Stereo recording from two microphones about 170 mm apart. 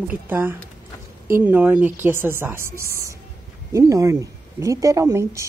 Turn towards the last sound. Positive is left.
turn(degrees=-20)  # may be behind; listen again after turning